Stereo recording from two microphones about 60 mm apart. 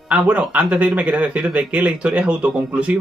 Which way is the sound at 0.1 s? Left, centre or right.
Right.